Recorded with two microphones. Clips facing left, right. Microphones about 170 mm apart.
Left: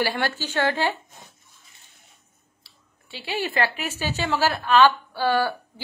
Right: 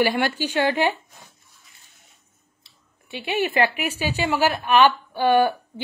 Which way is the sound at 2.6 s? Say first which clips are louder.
Even; 20° right (ahead or behind).